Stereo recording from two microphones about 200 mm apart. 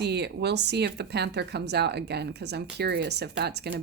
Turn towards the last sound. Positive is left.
turn(degrees=-55)  # may be behind; listen again after turning